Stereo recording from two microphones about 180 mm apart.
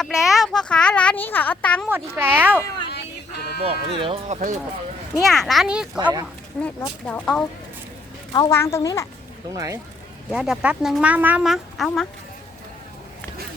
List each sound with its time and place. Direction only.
0.0 s a sound: centre (ahead or behind)
1.9 s a child's voice: 10° right (ahead or behind)
2.9 s music: 65° left (ahead or behind)
3.7 s speech: 30° right (ahead or behind)
5.2 s speech: centre (ahead or behind)
6.5 s speech: 5° left (ahead or behind)
8.3 s speech: 20° left (ahead or behind)
9.5 s speech: 20° right (ahead or behind)
10.2 s speech: 5° right (ahead or behind)